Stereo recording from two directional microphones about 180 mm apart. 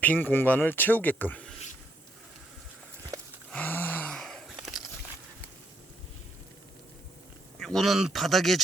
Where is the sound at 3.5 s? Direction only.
10° left (ahead or behind).